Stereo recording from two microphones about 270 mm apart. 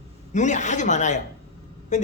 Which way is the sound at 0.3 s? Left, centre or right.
Left.